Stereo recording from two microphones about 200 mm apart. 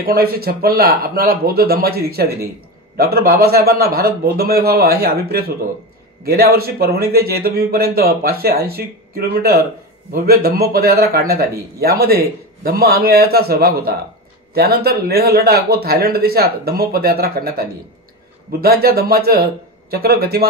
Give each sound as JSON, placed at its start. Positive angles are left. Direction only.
{"t": 0.0, "sound": "speech", "side_deg": -50}